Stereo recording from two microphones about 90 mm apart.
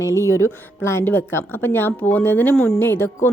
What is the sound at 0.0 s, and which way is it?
A woman's voice, 35° left (ahead or behind).